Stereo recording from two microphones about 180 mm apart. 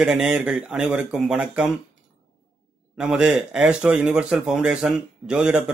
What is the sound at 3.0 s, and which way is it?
A man's voice, 5° right (ahead or behind).